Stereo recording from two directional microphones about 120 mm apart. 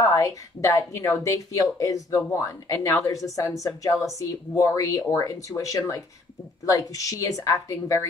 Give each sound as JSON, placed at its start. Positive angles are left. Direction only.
{"t": 0.0, "sound": "a woman's voice", "side_deg": 30}